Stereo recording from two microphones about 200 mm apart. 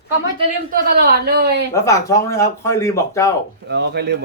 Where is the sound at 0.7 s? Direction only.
50° right (ahead or behind).